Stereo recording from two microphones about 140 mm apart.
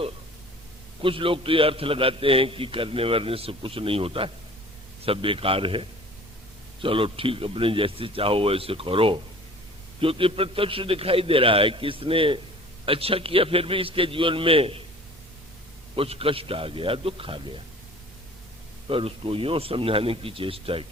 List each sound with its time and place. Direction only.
1.0 s a man's voice: 40° right (ahead or behind)
16.0 s a man's voice: 40° right (ahead or behind)
18.9 s a man's voice: 40° right (ahead or behind)